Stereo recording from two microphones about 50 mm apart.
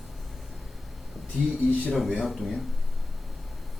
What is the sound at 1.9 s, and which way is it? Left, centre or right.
Speech, centre.